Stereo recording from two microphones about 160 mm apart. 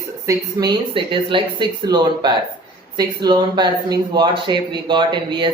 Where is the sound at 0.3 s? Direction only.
25° right (ahead or behind).